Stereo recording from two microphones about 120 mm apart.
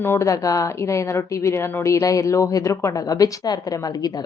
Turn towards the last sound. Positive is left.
turn(degrees=35)  # may be behind; listen again after turning